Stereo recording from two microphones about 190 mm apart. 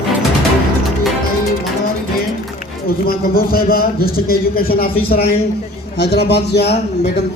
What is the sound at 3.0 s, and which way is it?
A man's voice, 50° left (ahead or behind).